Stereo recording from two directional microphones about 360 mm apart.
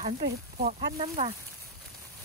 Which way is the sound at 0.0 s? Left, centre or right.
Right.